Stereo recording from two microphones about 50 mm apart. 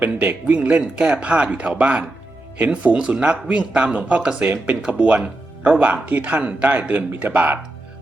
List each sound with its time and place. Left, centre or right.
0.0 s speech: right